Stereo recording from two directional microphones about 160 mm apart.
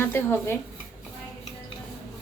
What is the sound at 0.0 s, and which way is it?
Speech, 15° left (ahead or behind).